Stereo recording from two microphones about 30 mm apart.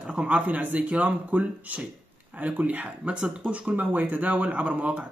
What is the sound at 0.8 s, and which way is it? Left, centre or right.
Speech, right.